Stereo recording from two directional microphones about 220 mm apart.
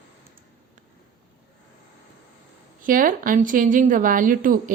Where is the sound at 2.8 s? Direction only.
40° right (ahead or behind).